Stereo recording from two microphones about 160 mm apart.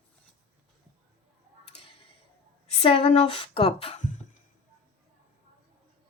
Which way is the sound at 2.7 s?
35° left (ahead or behind).